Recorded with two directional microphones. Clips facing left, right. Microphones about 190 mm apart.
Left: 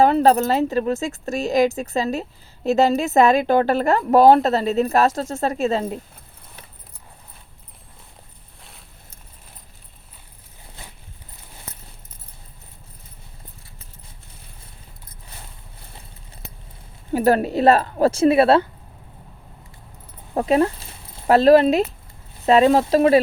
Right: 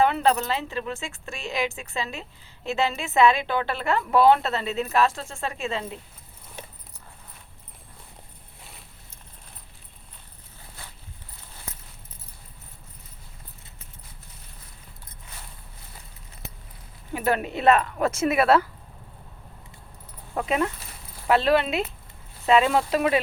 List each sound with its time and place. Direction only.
0.0 s speech: 40° left (ahead or behind)
17.1 s speech: 40° left (ahead or behind)
20.3 s a sound: 35° left (ahead or behind)
21.2 s speech: 40° left (ahead or behind)